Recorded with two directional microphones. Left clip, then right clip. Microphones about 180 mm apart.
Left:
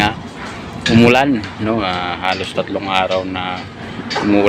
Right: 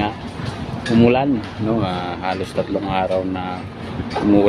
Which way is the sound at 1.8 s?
10° right (ahead or behind).